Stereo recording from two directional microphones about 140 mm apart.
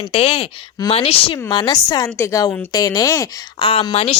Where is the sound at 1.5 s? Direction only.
30° left (ahead or behind).